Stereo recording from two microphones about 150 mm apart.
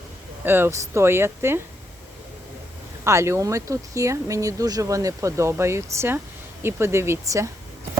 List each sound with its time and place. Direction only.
0.4 s speech: 15° right (ahead or behind)
3.0 s speech: 20° right (ahead or behind)